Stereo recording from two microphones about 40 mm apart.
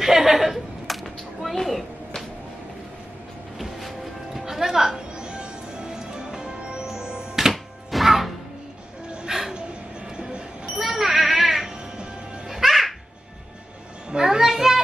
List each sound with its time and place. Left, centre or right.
0.0 s a sound: centre
3.5 s music: centre
7.5 s music: centre
9.3 s dog: centre
10.1 s a sound: right
10.8 s cat: centre
12.4 s music: centre
14.1 s child singing: centre